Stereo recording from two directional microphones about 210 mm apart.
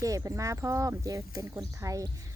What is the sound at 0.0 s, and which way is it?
Speech, 15° right (ahead or behind).